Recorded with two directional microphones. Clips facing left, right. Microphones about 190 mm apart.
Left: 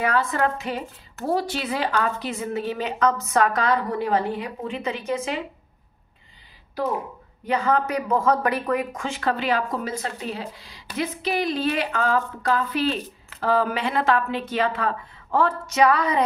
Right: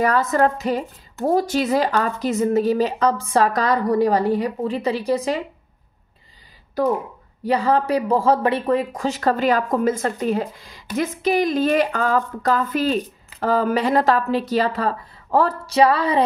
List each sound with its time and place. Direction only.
0.0 s a woman's voice: 40° right (ahead or behind)
7.4 s a woman's voice: 35° right (ahead or behind)